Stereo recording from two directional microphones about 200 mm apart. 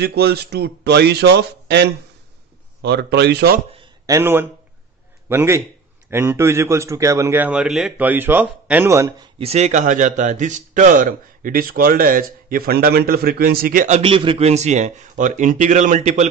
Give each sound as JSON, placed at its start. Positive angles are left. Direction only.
{"t": 0.0, "sound": "speech", "side_deg": -55}
{"t": 3.7, "sound": "a sound", "side_deg": -15}
{"t": 5.3, "sound": "a man's voice", "side_deg": -15}
{"t": 9.4, "sound": "speech", "side_deg": -35}